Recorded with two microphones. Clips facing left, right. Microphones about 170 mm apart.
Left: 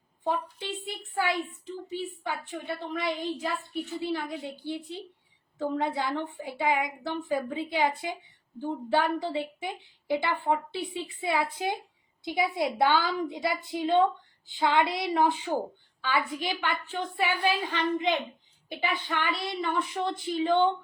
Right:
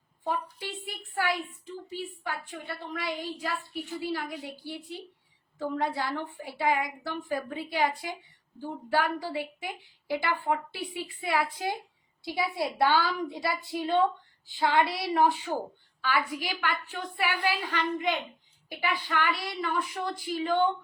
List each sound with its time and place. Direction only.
0.3 s a woman's voice: 20° left (ahead or behind)